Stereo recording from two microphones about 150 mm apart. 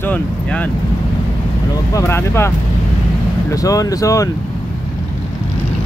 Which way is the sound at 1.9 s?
15° left (ahead or behind).